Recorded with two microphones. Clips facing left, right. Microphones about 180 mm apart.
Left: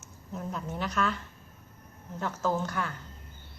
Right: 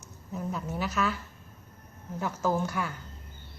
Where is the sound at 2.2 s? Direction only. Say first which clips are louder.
Right 1 dB; 10° right (ahead or behind).